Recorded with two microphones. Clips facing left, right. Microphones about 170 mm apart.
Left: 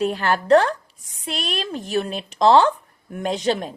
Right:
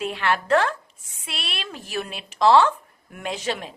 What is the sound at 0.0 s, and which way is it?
A woman's voice, 40° left (ahead or behind).